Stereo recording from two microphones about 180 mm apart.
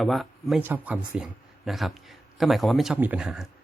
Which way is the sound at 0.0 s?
Centre (ahead or behind).